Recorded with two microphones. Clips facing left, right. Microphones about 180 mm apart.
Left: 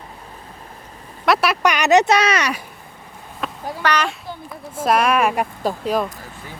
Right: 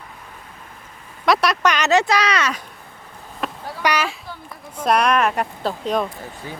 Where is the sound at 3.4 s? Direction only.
Centre (ahead or behind).